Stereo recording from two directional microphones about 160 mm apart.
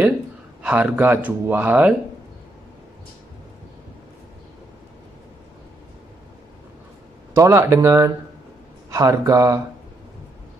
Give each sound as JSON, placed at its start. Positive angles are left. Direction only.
{"t": 0.6, "sound": "speech", "side_deg": -10}
{"t": 7.3, "sound": "speech", "side_deg": -15}